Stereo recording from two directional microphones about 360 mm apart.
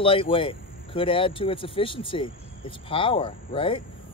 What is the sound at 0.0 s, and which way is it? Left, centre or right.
Speech, centre.